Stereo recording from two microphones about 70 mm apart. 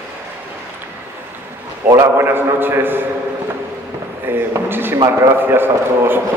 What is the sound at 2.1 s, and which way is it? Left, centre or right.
Speech, right.